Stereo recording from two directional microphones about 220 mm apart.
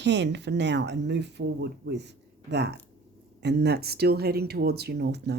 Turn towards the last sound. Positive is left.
turn(degrees=-50)  # may be behind; listen again after turning